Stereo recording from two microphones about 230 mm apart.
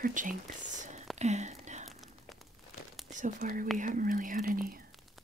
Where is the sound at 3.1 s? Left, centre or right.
Right.